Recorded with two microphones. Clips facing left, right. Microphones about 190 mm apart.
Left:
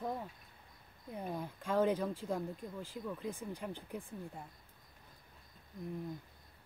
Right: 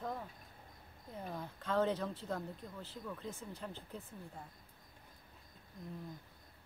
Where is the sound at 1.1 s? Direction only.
15° left (ahead or behind).